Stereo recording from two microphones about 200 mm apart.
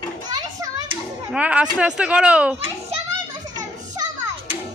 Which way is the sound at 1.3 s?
5° right (ahead or behind).